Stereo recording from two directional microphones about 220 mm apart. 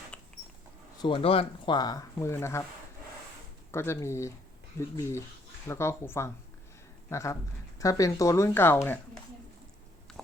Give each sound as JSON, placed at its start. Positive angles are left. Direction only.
{"t": 0.1, "sound": "a sound", "side_deg": 5}
{"t": 1.0, "sound": "speech", "side_deg": 25}
{"t": 3.7, "sound": "speech", "side_deg": 10}